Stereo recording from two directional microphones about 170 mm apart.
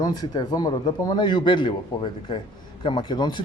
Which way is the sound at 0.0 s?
25° left (ahead or behind).